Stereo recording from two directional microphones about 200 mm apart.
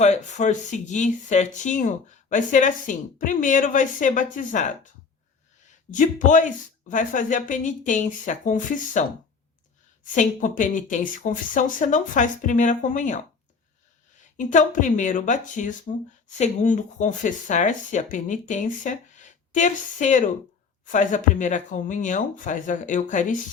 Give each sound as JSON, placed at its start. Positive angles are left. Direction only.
{"t": 0.0, "sound": "speech", "side_deg": 35}
{"t": 5.9, "sound": "speech", "side_deg": 40}
{"t": 14.3, "sound": "speech", "side_deg": 40}